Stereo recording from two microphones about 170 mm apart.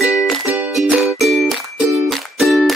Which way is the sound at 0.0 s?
Centre (ahead or behind).